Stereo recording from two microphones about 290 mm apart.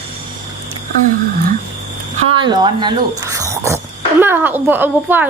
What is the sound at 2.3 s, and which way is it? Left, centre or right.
Speech, centre.